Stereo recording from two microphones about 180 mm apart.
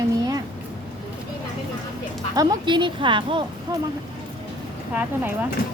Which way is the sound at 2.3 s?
20° right (ahead or behind).